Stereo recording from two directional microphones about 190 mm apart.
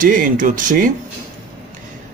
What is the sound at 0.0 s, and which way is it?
Speech, 45° right (ahead or behind).